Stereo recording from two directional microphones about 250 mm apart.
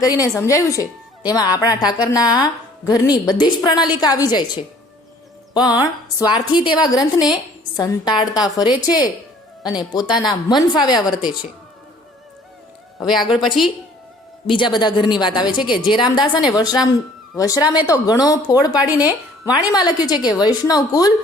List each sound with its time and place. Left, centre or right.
0.0 s a woman's voice: centre
13.0 s a woman's voice: centre
14.4 s a woman's voice: centre